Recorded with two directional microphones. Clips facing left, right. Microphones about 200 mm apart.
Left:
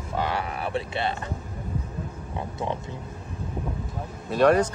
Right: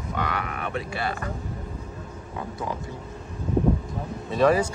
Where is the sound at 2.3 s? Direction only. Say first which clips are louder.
Left 1 dB; 25° left (ahead or behind).